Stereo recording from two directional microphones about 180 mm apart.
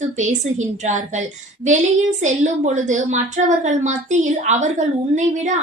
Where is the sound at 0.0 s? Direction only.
40° right (ahead or behind).